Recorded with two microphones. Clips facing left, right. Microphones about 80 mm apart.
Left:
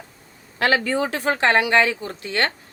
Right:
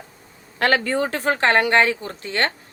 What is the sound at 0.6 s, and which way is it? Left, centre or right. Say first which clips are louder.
A woman's voice: even; right.